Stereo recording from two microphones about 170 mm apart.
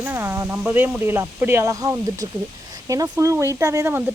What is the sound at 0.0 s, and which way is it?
Speech, 15° right (ahead or behind).